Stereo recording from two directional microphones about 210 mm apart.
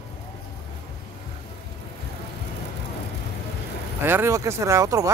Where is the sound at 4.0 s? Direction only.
10° right (ahead or behind).